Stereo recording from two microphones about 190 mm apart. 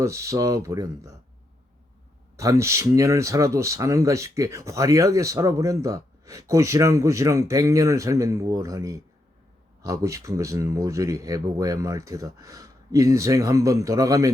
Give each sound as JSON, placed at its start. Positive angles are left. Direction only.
{"t": 0.0, "sound": "speech", "side_deg": -15}
{"t": 2.3, "sound": "speech", "side_deg": -15}